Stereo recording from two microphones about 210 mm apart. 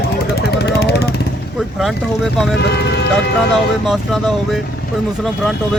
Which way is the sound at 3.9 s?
Centre (ahead or behind).